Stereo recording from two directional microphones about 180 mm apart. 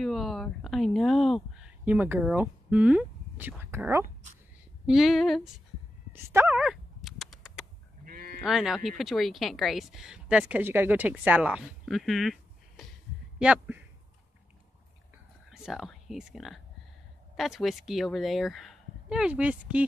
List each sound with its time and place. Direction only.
0.0 s a sound: centre (ahead or behind)
4.8 s speech: centre (ahead or behind)
6.2 s dog: 15° right (ahead or behind)
8.0 s sheep: 55° right (ahead or behind)
8.4 s speech: centre (ahead or behind)
15.5 s speech: centre (ahead or behind)